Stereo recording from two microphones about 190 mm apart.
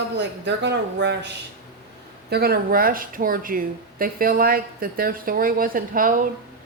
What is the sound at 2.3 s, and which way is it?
Speech, 55° right (ahead or behind).